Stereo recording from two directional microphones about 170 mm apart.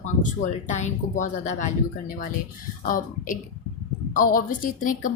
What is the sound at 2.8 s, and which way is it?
A woman's voice, 55° left (ahead or behind).